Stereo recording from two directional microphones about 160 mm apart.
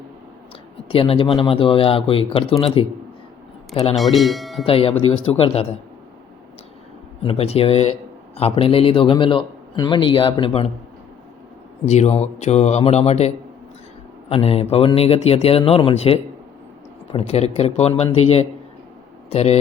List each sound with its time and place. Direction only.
0.9 s a man's voice: 35° left (ahead or behind)
3.9 s speech: centre (ahead or behind)
4.6 s a man's voice: 35° left (ahead or behind)
7.2 s a man's voice: 35° left (ahead or behind)
11.9 s a man's voice: 45° left (ahead or behind)